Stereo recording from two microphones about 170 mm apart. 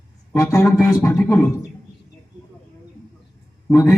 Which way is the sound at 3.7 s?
20° left (ahead or behind).